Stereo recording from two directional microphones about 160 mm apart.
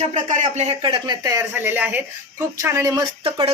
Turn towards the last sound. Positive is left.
turn(degrees=-35)  # may be behind; listen again after turning